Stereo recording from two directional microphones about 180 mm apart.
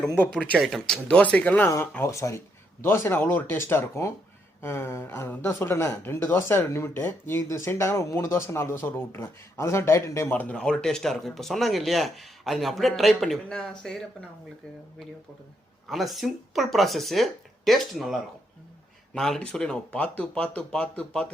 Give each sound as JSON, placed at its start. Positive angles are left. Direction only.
{"t": 0.3, "sound": "speech", "side_deg": 5}
{"t": 15.9, "sound": "speech", "side_deg": 0}